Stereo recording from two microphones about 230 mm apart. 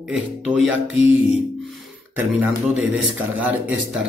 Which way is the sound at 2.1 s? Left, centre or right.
Centre.